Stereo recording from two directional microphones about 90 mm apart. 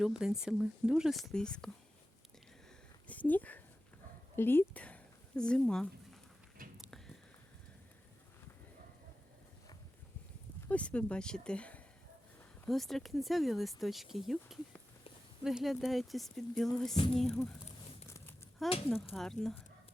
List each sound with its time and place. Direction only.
0.0 s speech: 5° right (ahead or behind); by 1.7 s 10° left (ahead or behind)
3.1 s speech: 20° left (ahead or behind)
6.7 s a sound: centre (ahead or behind)
10.7 s speech: 15° left (ahead or behind)
12.6 s speech: centre (ahead or behind)
18.6 s speech: centre (ahead or behind)